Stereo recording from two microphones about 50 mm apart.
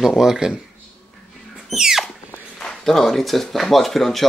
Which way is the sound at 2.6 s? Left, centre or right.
Centre.